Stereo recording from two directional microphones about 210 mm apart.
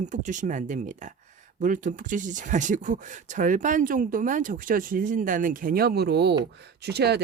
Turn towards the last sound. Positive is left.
turn(degrees=-50)  # may be behind; listen again after turning